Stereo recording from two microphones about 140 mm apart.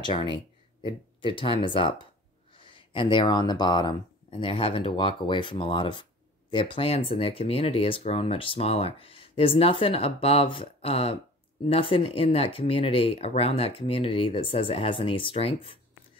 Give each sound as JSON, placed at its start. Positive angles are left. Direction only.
{"t": 0.0, "sound": "speech", "side_deg": 35}